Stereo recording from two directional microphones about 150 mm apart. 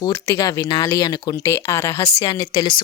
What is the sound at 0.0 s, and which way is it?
Speech, 20° left (ahead or behind).